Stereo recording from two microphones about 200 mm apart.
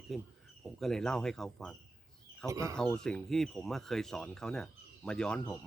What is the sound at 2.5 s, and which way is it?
Speech, 15° right (ahead or behind).